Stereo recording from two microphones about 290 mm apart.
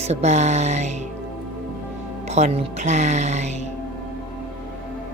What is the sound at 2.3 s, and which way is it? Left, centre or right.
Speech, right.